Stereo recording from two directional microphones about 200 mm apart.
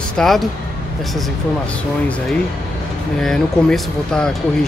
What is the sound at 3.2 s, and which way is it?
Speech, centre (ahead or behind).